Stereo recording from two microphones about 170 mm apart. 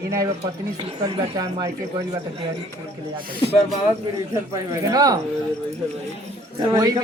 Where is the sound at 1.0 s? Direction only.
25° right (ahead or behind).